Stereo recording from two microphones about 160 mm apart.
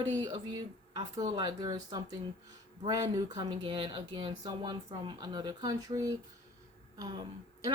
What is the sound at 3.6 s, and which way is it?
Speech, 35° right (ahead or behind).